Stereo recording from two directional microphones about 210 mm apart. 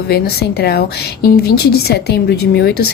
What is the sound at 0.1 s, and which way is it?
Speech, 50° left (ahead or behind).